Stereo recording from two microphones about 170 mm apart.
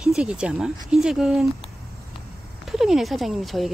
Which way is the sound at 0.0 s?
5° right (ahead or behind).